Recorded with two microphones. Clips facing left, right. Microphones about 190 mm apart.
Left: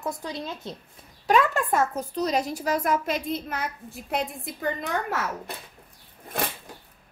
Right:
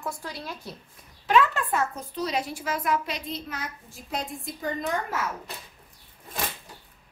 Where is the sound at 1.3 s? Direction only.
45° left (ahead or behind).